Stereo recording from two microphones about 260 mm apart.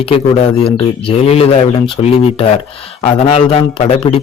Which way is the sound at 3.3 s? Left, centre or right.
Left.